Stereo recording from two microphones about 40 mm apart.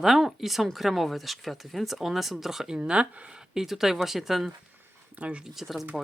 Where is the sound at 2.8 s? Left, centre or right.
Right.